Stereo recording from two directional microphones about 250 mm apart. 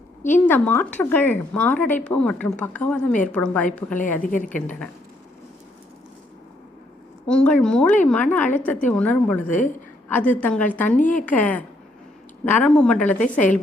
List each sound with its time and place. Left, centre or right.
0.3 s speech: centre
4.2 s a woman's voice: left
7.3 s a woman's voice: centre